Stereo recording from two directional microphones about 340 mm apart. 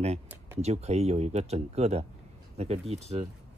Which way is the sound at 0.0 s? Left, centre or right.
Centre.